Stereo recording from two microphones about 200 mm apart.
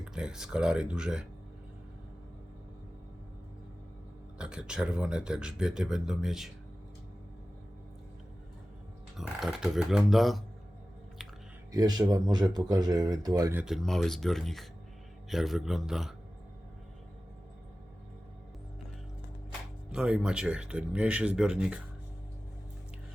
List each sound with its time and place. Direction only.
0.0 s speech: 5° right (ahead or behind)
4.4 s speech: 5° right (ahead or behind)
9.1 s speech: centre (ahead or behind)
11.7 s speech: 20° right (ahead or behind); by 16.1 s centre (ahead or behind)
19.9 s speech: 5° right (ahead or behind)